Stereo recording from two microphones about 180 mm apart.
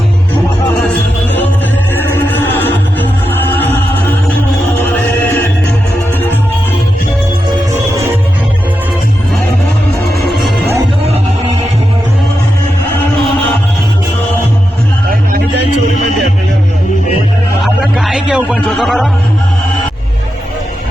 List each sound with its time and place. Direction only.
2.0 s music: 10° left (ahead or behind)
4.9 s music: 10° left (ahead or behind)
7.7 s music: 15° right (ahead or behind)
10.2 s music: centre (ahead or behind)
17.6 s a sound: centre (ahead or behind)